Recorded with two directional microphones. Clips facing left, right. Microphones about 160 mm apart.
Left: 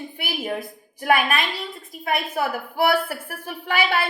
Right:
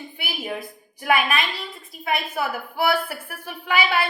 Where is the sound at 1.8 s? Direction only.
45° left (ahead or behind).